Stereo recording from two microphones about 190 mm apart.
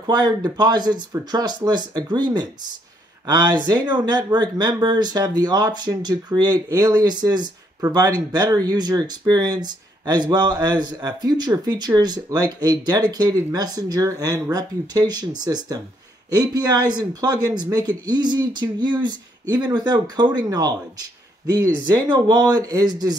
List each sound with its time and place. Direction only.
0.0 s speech: 20° right (ahead or behind)
3.7 s speech: 20° right (ahead or behind)